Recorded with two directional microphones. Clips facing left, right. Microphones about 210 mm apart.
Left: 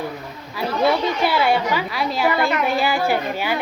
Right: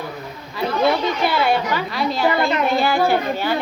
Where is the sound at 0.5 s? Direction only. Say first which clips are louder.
Right 1 dB; 5° left (ahead or behind).